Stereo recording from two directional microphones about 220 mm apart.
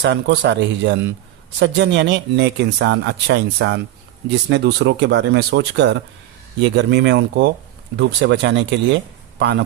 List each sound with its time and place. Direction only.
0.0 s speech: 50° right (ahead or behind)